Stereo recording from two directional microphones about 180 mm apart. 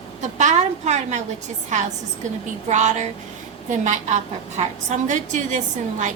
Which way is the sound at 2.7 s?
40° right (ahead or behind).